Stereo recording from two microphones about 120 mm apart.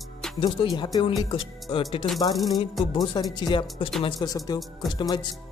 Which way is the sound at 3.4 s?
45° left (ahead or behind).